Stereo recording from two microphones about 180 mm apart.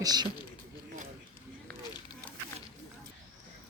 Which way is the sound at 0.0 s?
20° right (ahead or behind).